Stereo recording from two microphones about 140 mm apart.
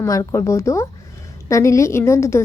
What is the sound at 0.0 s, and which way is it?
A woman's voice, 25° left (ahead or behind).